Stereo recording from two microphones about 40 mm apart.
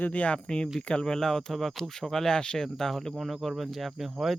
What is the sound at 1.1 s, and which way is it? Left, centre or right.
Speech, centre.